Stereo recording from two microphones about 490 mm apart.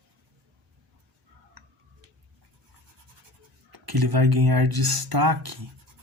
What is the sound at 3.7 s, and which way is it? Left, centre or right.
Speech, right.